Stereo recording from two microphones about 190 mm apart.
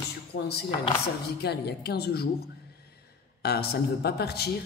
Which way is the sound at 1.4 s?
60° left (ahead or behind).